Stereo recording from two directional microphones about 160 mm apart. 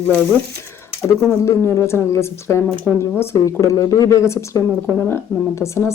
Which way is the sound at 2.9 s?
5° left (ahead or behind).